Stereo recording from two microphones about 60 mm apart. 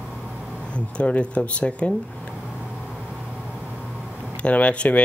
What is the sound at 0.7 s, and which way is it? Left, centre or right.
Speech, left.